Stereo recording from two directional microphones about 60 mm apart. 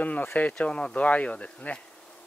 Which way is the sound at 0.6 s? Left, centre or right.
Centre.